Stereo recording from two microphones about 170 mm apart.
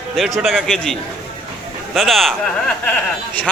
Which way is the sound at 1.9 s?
Centre (ahead or behind).